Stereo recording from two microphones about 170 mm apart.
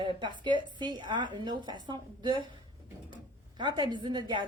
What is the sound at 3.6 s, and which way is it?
Speech, 25° right (ahead or behind).